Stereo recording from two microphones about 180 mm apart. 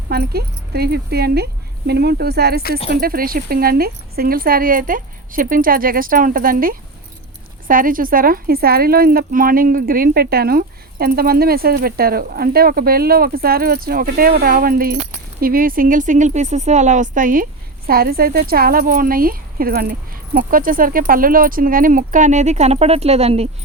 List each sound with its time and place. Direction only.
0.1 s speech: 60° right (ahead or behind); by 23.5 s 35° right (ahead or behind)